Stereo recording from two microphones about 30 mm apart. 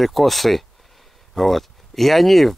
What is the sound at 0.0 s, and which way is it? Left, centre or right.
Speech, centre.